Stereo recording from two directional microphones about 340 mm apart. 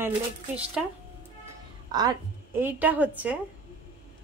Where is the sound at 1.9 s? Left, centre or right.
Centre.